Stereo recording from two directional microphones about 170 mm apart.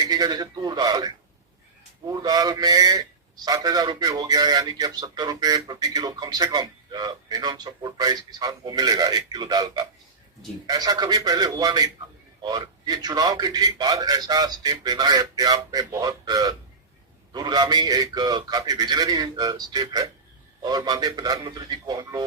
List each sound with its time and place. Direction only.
0.0 s a man's voice: 25° right (ahead or behind)